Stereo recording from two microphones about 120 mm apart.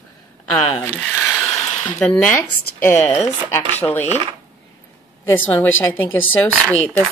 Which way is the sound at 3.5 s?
20° left (ahead or behind).